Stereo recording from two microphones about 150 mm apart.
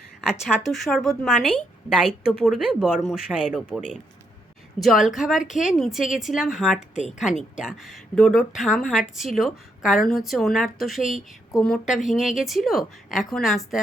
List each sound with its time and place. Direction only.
0.2 s speech: centre (ahead or behind)
6.7 s a woman's voice: 50° left (ahead or behind)
7.6 s speech: centre (ahead or behind)